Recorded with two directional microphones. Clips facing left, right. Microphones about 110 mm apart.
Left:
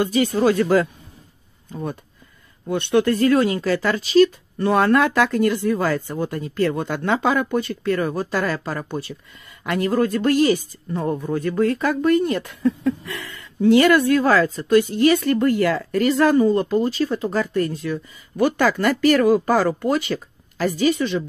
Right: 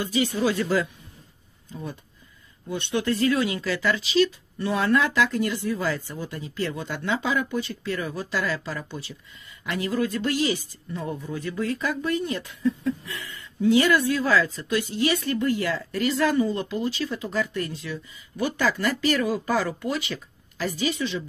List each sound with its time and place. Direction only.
0.0 s speech: 50° left (ahead or behind)